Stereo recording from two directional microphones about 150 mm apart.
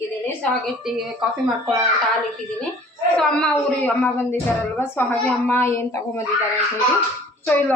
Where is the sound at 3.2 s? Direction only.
5° left (ahead or behind).